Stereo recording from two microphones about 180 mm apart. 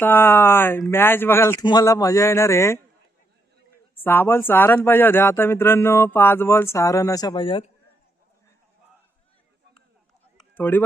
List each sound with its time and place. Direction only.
0.0 s speech: 10° left (ahead or behind)
4.0 s speech: 10° left (ahead or behind); by 7.6 s 30° left (ahead or behind)
10.3 s a sound: 10° left (ahead or behind)